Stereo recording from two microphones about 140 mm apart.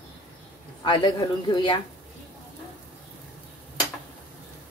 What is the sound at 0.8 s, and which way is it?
Stir, 35° left (ahead or behind).